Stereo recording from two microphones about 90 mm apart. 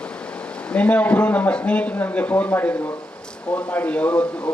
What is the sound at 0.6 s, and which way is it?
Speech, 15° left (ahead or behind).